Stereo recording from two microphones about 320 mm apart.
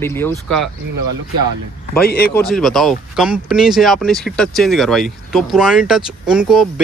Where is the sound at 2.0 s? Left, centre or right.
Left.